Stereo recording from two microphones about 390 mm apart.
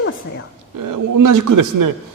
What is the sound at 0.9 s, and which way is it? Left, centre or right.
A man's voice, right.